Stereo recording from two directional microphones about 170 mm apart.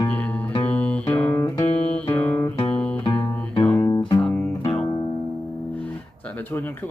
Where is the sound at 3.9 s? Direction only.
25° left (ahead or behind).